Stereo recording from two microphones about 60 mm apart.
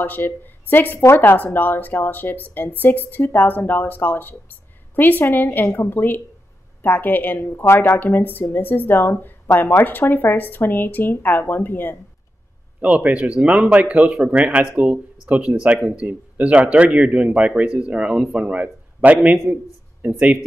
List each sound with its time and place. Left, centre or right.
0.0 s a woman's voice: left
13.0 s speech: right